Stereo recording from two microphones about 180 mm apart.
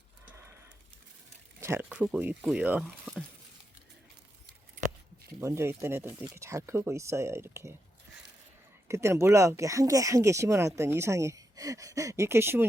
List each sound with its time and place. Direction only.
1.6 s speech: 10° right (ahead or behind)
5.4 s speech: 15° right (ahead or behind)
8.9 s speech: 15° right (ahead or behind)